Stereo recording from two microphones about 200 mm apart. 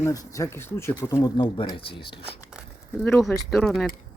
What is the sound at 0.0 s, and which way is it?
Speech, 15° left (ahead or behind).